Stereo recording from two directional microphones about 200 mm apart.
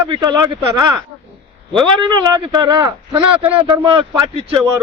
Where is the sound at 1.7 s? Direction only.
20° right (ahead or behind).